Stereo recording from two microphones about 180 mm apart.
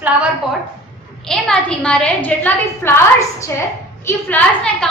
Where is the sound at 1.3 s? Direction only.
5° left (ahead or behind).